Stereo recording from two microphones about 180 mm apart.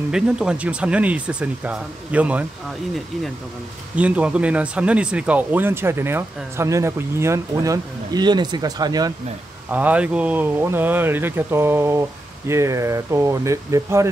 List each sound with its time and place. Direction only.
0.1 s speech: 5° right (ahead or behind)
3.9 s speech: 5° right (ahead or behind)
9.7 s speech: 10° right (ahead or behind)